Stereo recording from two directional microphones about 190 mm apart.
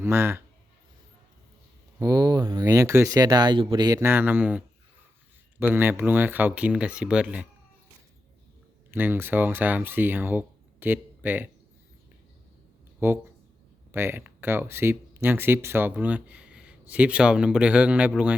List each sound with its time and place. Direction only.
0.0 s a man's voice: 15° right (ahead or behind)
2.0 s speech: 20° right (ahead or behind)
8.9 s speech: 10° right (ahead or behind)
13.0 s speech: 10° right (ahead or behind)